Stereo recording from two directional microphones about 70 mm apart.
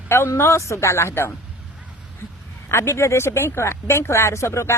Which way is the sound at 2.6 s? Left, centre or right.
Left.